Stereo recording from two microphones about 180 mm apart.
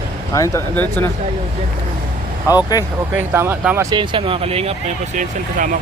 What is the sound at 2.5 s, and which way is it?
Speech, 20° left (ahead or behind).